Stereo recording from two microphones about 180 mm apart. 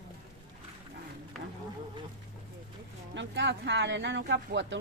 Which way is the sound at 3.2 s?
75° right (ahead or behind).